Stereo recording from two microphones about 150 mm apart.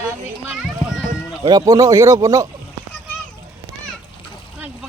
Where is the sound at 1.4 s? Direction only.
25° right (ahead or behind).